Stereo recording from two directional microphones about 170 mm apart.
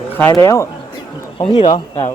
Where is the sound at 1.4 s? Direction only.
30° left (ahead or behind).